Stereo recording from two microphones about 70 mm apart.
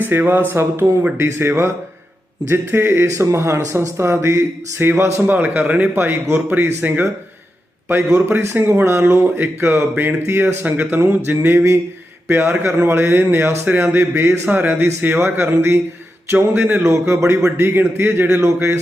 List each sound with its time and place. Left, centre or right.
0.0 s speech: right
5.9 s speech: right
6.5 s speech: right
10.2 s speech: right
10.6 s speech: right
14.4 s speech: right
17.7 s speech: right
18.3 s speech: right